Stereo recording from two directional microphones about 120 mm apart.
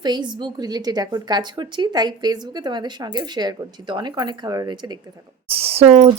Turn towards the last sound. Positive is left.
turn(degrees=-60)  # may be behind; listen again after turning